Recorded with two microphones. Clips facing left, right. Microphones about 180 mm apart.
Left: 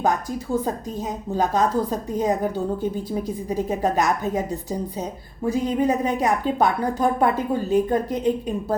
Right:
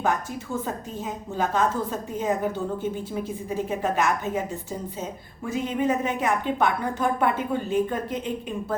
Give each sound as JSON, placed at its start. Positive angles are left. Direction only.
{"t": 0.0, "sound": "a woman's voice", "side_deg": 35}
{"t": 5.5, "sound": "a woman's voice", "side_deg": 35}